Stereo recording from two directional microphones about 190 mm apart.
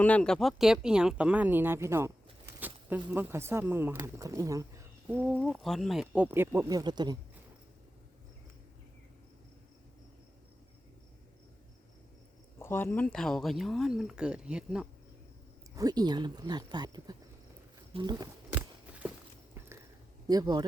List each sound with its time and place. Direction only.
0.0 s speech: 5° left (ahead or behind); by 7.2 s 20° right (ahead or behind)
12.5 s speech: 10° left (ahead or behind); by 14.8 s 5° right (ahead or behind)
15.7 s speech: 20° right (ahead or behind)
18.5 s a sound: 10° right (ahead or behind)
19.5 s biting: 15° right (ahead or behind)
20.2 s speech: 20° right (ahead or behind)